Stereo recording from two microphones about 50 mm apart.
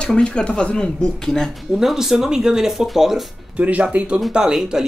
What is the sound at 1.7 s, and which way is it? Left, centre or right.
Speech, centre.